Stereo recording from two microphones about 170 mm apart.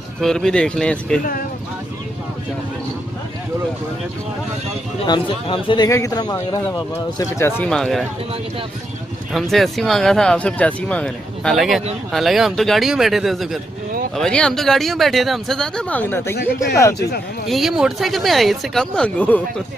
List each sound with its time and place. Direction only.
0.2 s speech: 5° left (ahead or behind)
5.0 s speech: 30° left (ahead or behind); by 8.0 s 5° left (ahead or behind)
9.3 s speech: centre (ahead or behind)
17.5 s speech: centre (ahead or behind)